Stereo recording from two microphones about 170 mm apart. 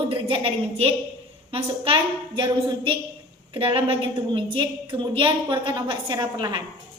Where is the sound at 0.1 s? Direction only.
30° right (ahead or behind).